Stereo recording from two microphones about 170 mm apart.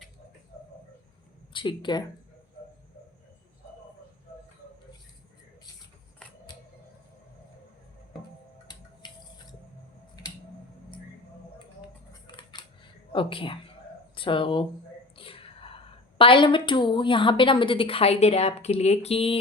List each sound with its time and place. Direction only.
1.5 s speech: 30° left (ahead or behind)
9.0 s drip: 25° left (ahead or behind)
12.4 s camera: 25° left (ahead or behind)
13.1 s a woman's voice: 30° left (ahead or behind)